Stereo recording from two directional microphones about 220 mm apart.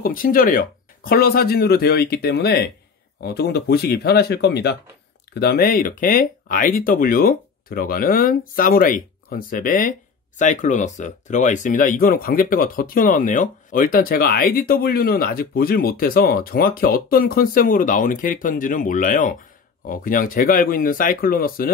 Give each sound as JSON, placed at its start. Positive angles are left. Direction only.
{"t": 0.0, "sound": "speech", "side_deg": 40}